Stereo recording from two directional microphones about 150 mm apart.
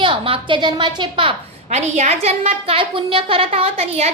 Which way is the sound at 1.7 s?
45° right (ahead or behind).